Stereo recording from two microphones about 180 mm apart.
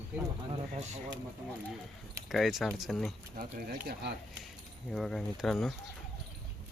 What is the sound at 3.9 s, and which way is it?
Speech, 70° right (ahead or behind).